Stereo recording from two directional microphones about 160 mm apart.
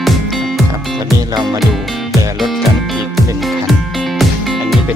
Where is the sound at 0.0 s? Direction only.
Centre (ahead or behind).